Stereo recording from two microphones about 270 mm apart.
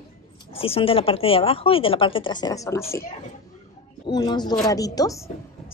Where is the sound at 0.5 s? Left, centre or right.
Left.